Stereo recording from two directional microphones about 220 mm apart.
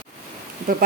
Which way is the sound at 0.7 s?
35° right (ahead or behind).